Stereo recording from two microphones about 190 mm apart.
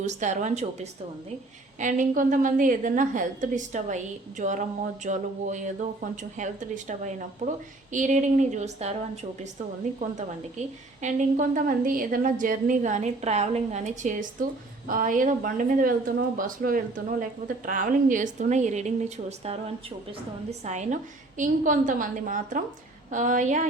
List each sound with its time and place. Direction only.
0.0 s a woman's voice: 40° right (ahead or behind)
11.0 s a woman's voice: 45° right (ahead or behind)